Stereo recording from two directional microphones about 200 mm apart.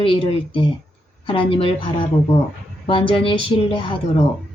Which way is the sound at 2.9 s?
25° left (ahead or behind).